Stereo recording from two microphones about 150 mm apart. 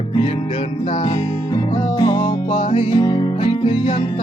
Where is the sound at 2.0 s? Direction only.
30° left (ahead or behind).